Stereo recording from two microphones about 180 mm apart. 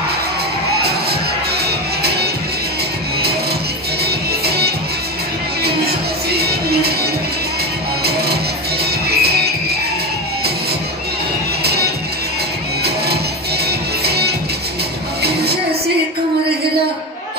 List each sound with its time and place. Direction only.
1.6 s music: 60° right (ahead or behind)
4.0 s music: 60° right (ahead or behind)
9.1 s music: 60° right (ahead or behind)
11.6 s music: 60° right (ahead or behind)